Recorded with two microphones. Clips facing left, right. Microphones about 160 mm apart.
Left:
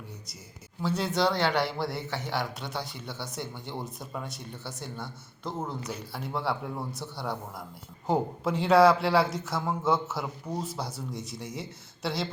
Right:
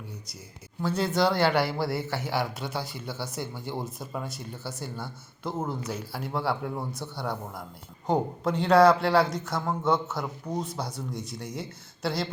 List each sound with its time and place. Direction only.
0.8 s speech: centre (ahead or behind)